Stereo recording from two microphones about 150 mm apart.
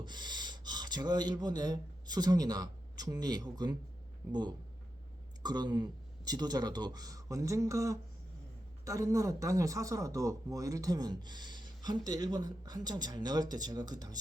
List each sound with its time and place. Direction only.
0.0 s speech: 30° right (ahead or behind)